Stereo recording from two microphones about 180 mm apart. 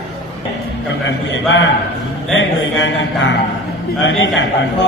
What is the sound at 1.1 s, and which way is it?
A man's voice, 90° left.